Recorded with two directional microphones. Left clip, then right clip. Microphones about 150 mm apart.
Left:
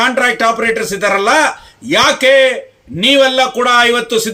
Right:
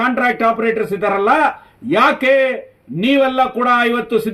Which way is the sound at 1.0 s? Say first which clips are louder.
Left 3 dB; 25° left (ahead or behind).